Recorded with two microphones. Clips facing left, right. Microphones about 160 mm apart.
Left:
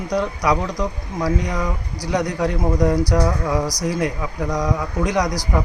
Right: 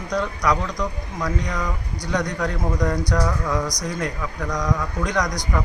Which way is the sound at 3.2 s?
25° left (ahead or behind).